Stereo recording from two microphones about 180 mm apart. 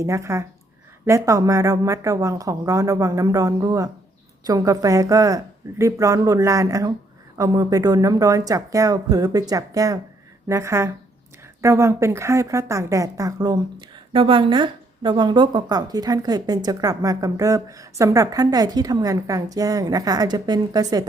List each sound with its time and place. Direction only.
0.0 s speech: 15° right (ahead or behind)